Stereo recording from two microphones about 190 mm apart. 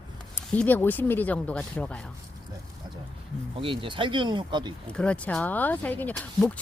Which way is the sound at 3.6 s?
25° right (ahead or behind).